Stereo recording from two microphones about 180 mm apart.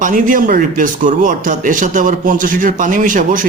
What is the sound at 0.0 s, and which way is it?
A man's voice, 45° right (ahead or behind).